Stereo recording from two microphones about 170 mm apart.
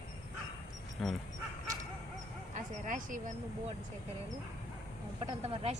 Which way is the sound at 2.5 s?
50° right (ahead or behind).